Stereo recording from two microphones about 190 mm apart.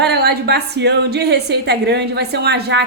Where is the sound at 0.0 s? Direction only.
60° right (ahead or behind).